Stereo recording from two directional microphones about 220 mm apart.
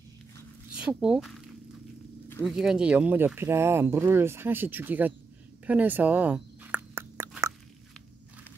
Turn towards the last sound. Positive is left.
turn(degrees=-15)  # may be behind; listen again after turning